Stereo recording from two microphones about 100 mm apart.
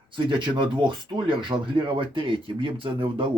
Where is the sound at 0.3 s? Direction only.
55° right (ahead or behind).